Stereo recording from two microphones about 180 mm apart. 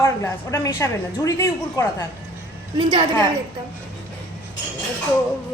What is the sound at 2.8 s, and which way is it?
Speech, 25° right (ahead or behind).